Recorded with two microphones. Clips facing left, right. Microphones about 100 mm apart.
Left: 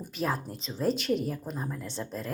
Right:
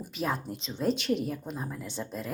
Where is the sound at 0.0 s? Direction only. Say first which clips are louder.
Left 1 dB; centre (ahead or behind).